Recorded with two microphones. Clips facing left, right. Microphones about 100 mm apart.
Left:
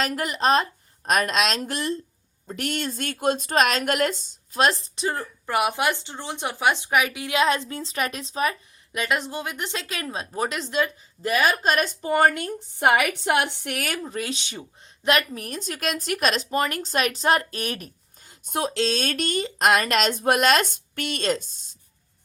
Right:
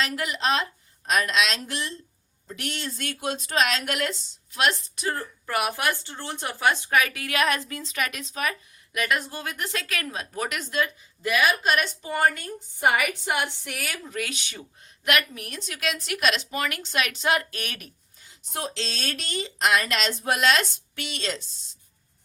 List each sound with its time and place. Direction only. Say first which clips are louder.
0.0 s speech: left 3 dB; 45° left (ahead or behind)
5.0 s speech: left 2 dB; 20° left (ahead or behind); by 14.0 s 55° left (ahead or behind)
14.0 s speech: left 3 dB; 30° left (ahead or behind); by 21.5 s 50° left (ahead or behind)